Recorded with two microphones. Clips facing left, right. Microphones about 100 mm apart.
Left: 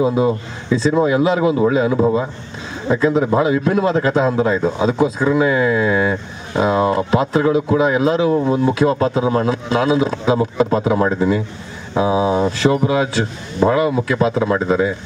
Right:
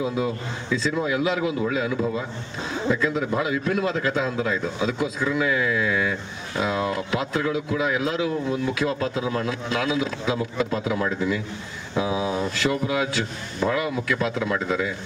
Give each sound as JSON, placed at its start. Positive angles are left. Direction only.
{"t": 0.0, "sound": "speech", "side_deg": 30}